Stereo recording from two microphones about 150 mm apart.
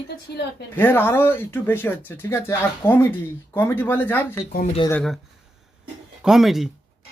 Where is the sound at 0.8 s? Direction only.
15° left (ahead or behind).